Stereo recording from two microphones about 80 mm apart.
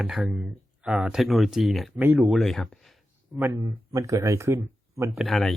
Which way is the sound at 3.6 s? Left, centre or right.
Right.